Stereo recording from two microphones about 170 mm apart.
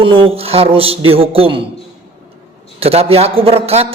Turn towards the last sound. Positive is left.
turn(degrees=-35)  # may be behind; listen again after turning